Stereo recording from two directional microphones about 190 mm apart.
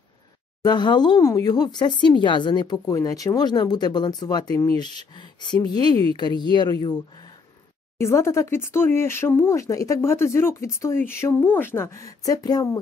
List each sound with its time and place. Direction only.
0.6 s speech: 20° left (ahead or behind)
8.0 s speech: 15° left (ahead or behind)